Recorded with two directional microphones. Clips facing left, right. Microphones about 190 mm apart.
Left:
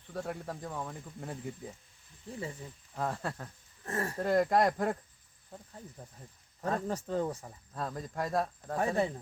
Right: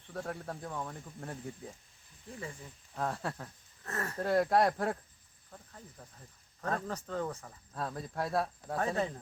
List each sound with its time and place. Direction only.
0.1 s speech: 10° left (ahead or behind)
2.9 s speech: 5° left (ahead or behind)
3.8 s speech: 30° left (ahead or behind)
4.2 s speech: 5° right (ahead or behind)
5.5 s speech: 20° left (ahead or behind)
7.7 s speech: centre (ahead or behind)
8.7 s speech: 15° left (ahead or behind)